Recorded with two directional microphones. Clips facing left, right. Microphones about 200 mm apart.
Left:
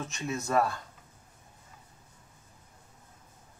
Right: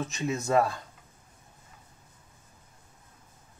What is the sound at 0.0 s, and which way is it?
Speech, 20° right (ahead or behind).